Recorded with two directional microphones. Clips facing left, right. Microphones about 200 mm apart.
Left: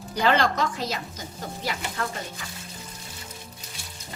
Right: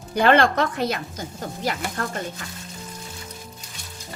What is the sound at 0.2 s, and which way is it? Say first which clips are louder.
Speech: right 5 dB; 60° right (ahead or behind).